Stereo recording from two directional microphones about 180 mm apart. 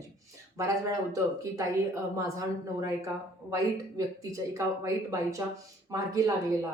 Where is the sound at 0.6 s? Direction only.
20° right (ahead or behind).